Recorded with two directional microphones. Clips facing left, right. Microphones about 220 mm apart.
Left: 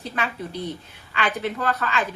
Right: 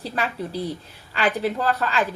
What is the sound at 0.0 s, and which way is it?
A woman's voice, 35° right (ahead or behind).